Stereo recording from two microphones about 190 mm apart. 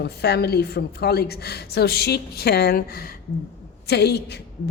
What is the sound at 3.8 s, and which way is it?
Speech, 60° left (ahead or behind).